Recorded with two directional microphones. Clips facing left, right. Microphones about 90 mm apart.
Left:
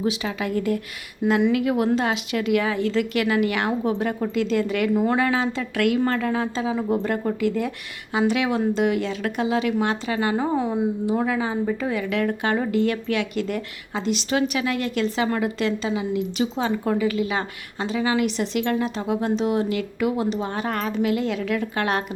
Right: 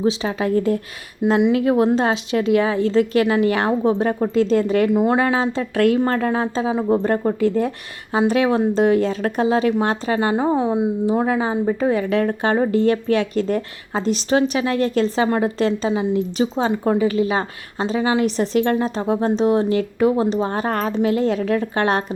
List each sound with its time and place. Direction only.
0.0 s a woman's voice: 30° right (ahead or behind)
1.2 s speech: 15° right (ahead or behind)
1.5 s a woman's voice: 30° right (ahead or behind)